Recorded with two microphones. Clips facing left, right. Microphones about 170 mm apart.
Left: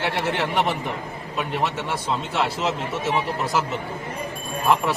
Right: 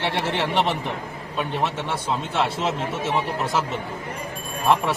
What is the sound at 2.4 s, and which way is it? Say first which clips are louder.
Speech: right 1 dB; 25° right (ahead or behind).